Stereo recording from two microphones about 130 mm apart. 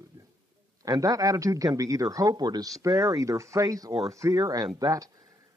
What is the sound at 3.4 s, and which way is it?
Speech, 25° right (ahead or behind).